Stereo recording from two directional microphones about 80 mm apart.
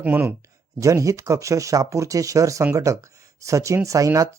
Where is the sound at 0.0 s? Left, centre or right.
Right.